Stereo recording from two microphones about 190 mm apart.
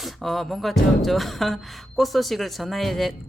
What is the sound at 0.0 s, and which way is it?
A woman's voice, centre (ahead or behind).